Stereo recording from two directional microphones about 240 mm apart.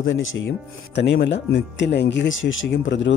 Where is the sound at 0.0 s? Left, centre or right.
Left.